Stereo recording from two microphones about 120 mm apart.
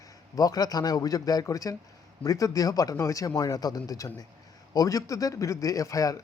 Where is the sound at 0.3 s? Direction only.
30° left (ahead or behind).